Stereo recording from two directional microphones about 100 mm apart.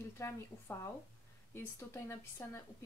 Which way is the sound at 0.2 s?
30° left (ahead or behind).